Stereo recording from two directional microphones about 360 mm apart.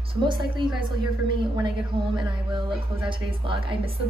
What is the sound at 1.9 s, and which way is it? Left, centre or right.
Speech, centre.